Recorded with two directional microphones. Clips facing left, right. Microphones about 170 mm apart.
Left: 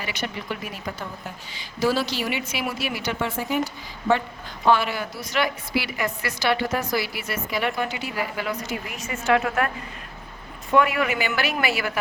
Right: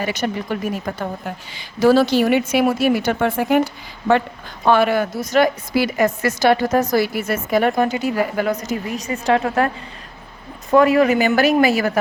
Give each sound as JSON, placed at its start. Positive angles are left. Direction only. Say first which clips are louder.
{"t": 0.0, "sound": "a woman's voice", "louder": "right 9 dB", "side_deg": -45}